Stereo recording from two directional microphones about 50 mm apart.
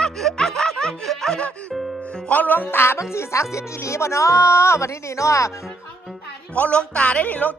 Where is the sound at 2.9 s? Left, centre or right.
Left.